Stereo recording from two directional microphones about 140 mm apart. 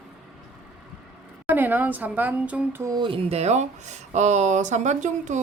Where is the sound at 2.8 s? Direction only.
30° right (ahead or behind).